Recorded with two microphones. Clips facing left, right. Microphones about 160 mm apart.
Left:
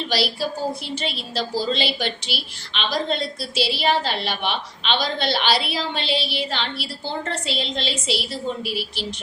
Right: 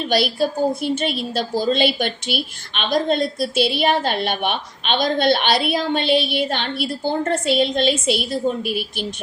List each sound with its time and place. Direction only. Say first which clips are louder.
0.1 s a woman's voice: right 6 dB; 50° right (ahead or behind)